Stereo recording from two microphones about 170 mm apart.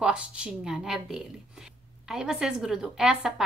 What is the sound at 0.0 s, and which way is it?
A woman's voice, 5° right (ahead or behind).